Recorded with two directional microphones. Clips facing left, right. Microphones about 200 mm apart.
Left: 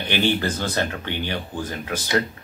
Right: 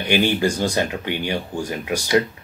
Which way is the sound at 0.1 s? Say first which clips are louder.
Right 3 dB; 15° right (ahead or behind).